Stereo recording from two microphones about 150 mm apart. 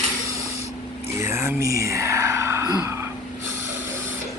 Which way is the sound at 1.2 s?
15° right (ahead or behind).